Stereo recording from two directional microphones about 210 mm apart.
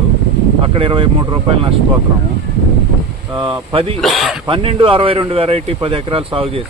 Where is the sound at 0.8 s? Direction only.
25° right (ahead or behind).